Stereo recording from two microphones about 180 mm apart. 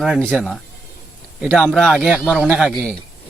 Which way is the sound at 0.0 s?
Centre (ahead or behind).